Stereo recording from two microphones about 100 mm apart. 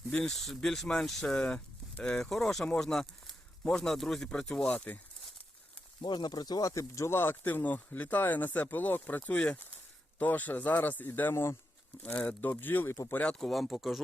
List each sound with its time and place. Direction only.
0.1 s speech: 5° left (ahead or behind)
6.0 s speech: 50° left (ahead or behind); by 13.3 s 15° left (ahead or behind)
13.4 s speech: centre (ahead or behind)